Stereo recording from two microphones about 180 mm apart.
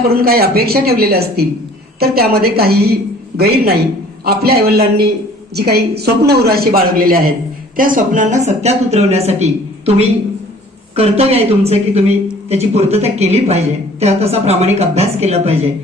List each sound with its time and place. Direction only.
0.1 s a woman's voice: 60° right (ahead or behind); by 9.9 s 35° right (ahead or behind)
10.9 s a woman's voice: 35° right (ahead or behind)